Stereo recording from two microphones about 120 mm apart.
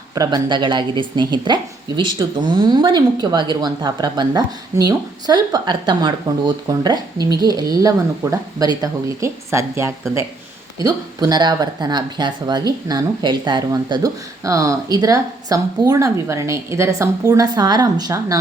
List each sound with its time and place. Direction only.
0.1 s speech: 30° right (ahead or behind)
13.7 s speech: 25° right (ahead or behind)